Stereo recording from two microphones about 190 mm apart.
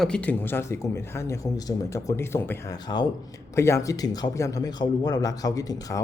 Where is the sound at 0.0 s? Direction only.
5° left (ahead or behind).